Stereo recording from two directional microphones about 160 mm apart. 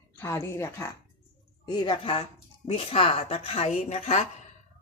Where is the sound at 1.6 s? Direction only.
30° left (ahead or behind).